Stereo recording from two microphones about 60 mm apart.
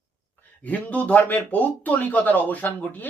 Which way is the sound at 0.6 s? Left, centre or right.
Left.